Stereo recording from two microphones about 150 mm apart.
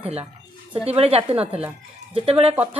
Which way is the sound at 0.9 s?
40° right (ahead or behind).